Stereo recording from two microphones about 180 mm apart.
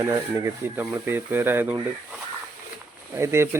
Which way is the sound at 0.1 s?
15° right (ahead or behind).